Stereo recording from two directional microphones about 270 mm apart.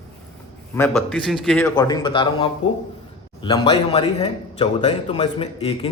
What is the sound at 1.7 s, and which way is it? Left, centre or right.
Speech, centre.